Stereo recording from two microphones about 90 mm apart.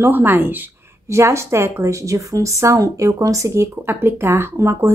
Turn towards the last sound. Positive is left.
turn(degrees=-30)  # may be behind; listen again after turning